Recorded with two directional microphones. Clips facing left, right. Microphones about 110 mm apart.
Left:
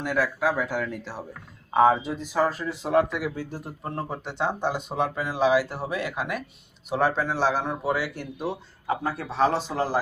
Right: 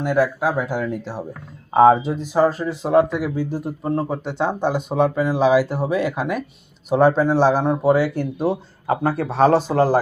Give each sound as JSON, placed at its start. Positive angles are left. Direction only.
{"t": 0.0, "sound": "speech", "side_deg": -20}
{"t": 1.7, "sound": "speech", "side_deg": -30}
{"t": 5.1, "sound": "speech", "side_deg": -20}
{"t": 9.0, "sound": "speech", "side_deg": -50}